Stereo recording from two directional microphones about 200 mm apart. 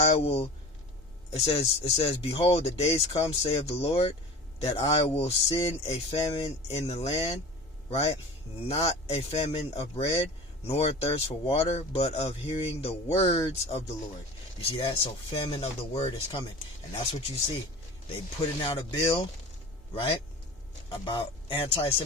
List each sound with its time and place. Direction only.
0.0 s speech: 30° left (ahead or behind)
18.6 s speech: 25° left (ahead or behind)